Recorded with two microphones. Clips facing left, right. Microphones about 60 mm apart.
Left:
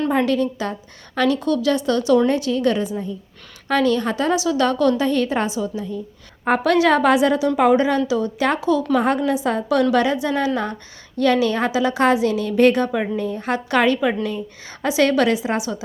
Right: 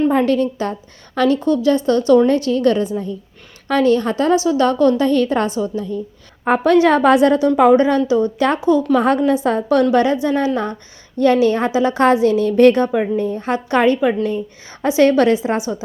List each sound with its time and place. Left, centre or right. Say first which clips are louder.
0.3 s a woman's voice: right 3 dB; right
1.4 s a woman's voice: right 4 dB; right
5.0 s a woman's voice: right 4 dB; right